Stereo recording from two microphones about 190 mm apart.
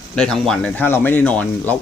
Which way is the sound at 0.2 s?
Centre (ahead or behind).